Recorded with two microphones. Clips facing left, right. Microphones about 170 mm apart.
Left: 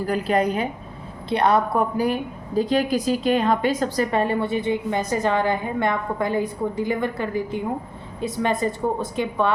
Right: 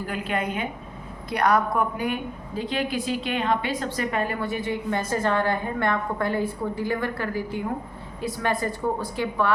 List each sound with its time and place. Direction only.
0.0 s a woman's voice: 40° left (ahead or behind); by 9.5 s 20° left (ahead or behind)